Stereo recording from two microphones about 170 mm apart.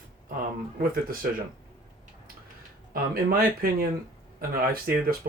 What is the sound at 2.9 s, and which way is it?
Speech, 60° right (ahead or behind).